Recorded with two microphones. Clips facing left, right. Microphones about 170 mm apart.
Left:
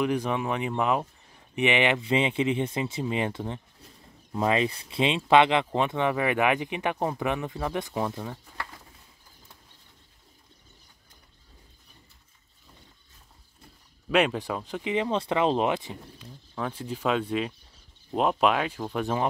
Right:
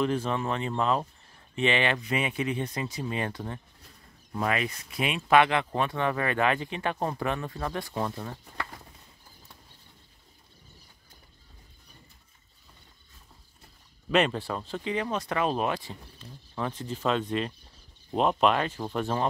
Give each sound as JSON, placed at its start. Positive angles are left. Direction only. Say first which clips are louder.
{"t": 0.0, "sound": "speech", "louder": "left 1 dB", "side_deg": 15}
{"t": 14.1, "sound": "speech", "louder": "left 1 dB", "side_deg": 10}
{"t": 16.5, "sound": "speech", "louder": "even", "side_deg": 0}